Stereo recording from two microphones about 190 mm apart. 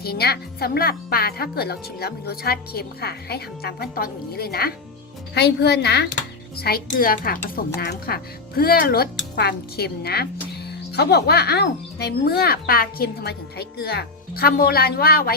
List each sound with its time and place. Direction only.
0.0 s a woman's voice: 55° left (ahead or behind)